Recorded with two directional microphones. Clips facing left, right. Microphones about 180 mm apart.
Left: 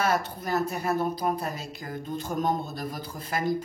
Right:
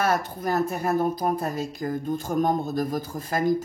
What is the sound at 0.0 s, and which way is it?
Speech, 50° right (ahead or behind).